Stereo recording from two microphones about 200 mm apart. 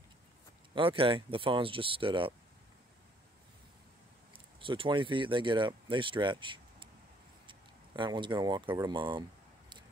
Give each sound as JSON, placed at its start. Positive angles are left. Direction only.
{"t": 0.7, "sound": "speech", "side_deg": -25}
{"t": 4.3, "sound": "speech", "side_deg": -25}